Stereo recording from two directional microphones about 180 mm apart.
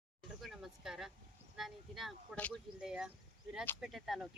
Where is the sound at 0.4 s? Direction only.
Centre (ahead or behind).